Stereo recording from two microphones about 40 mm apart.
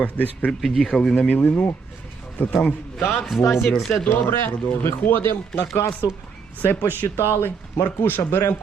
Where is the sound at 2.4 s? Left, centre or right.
Left.